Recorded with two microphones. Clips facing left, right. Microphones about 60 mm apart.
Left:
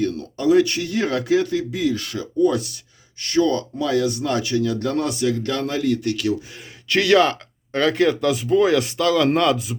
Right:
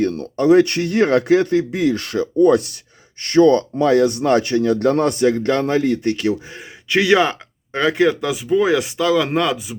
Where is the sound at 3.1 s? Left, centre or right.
Right.